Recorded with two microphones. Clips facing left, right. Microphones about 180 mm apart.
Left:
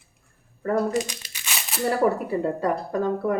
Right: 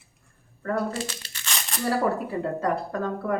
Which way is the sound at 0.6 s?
15° left (ahead or behind).